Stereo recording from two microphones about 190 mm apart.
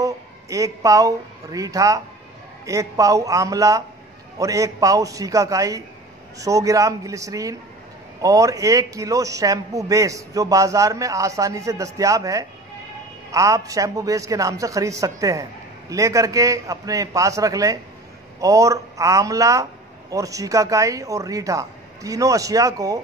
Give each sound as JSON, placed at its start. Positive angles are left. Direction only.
{"t": 0.0, "sound": "a man's voice", "side_deg": -15}